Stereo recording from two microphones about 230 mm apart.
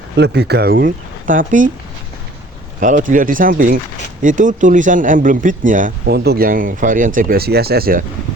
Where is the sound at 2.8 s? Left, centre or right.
Right.